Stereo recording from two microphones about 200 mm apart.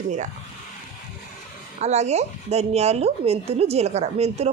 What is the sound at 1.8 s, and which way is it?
Speech, 35° right (ahead or behind).